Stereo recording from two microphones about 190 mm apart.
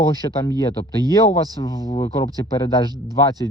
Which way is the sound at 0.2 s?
20° left (ahead or behind).